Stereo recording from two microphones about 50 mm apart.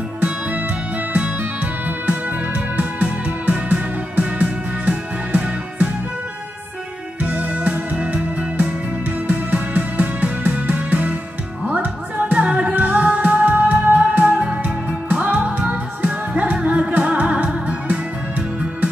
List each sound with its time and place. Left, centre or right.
0.2 s music: right
7.2 s music: right
12.7 s music: right